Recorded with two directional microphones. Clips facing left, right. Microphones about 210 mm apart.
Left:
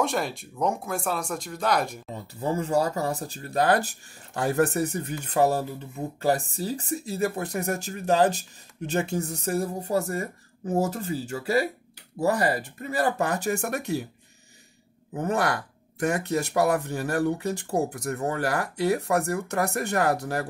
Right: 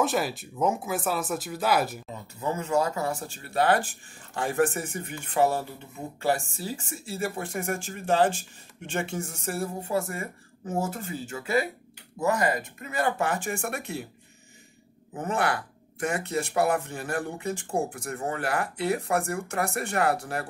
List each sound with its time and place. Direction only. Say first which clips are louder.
0.0 s speech: right 1 dB; 5° right (ahead or behind)
2.4 s speech: left 2 dB; 35° left (ahead or behind)
16.1 s speech: left 3 dB; 40° left (ahead or behind)